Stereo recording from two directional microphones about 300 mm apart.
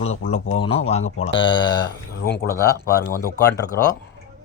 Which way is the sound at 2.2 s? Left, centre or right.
Left.